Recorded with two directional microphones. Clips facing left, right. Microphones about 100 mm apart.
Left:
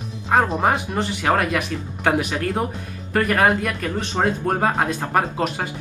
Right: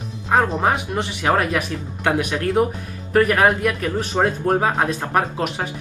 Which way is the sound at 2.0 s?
15° left (ahead or behind).